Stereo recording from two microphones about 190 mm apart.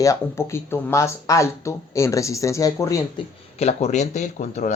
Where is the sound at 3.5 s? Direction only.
35° left (ahead or behind).